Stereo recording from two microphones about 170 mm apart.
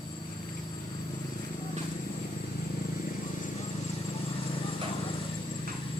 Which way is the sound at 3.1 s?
45° left (ahead or behind).